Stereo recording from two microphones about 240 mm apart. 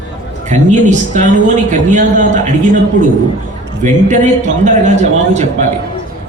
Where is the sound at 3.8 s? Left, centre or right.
Right.